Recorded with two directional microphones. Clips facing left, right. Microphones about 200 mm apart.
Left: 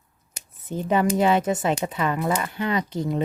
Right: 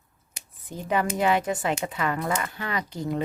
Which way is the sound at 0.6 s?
25° left (ahead or behind).